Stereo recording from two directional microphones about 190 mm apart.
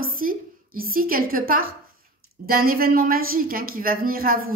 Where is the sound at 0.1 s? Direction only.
50° right (ahead or behind).